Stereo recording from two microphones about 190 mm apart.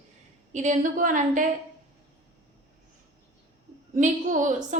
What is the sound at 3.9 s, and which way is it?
Speech, 40° right (ahead or behind).